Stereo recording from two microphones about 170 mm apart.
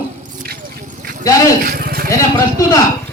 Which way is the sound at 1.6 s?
60° right (ahead or behind).